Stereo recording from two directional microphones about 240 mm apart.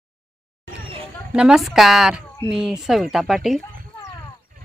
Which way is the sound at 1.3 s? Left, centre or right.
Centre.